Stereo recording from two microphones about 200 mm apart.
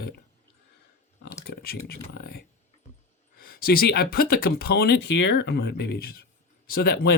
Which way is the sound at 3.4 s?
45° left (ahead or behind).